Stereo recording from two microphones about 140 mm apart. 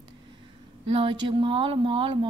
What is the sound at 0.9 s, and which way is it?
A woman's voice, 40° right (ahead or behind).